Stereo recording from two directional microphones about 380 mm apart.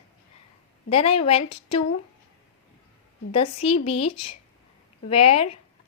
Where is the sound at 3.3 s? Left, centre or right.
Centre.